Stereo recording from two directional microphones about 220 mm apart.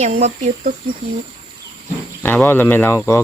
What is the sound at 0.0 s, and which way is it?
Speech, 30° right (ahead or behind).